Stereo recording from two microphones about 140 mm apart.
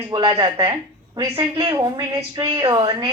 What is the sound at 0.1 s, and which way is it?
A woman's voice, 30° right (ahead or behind).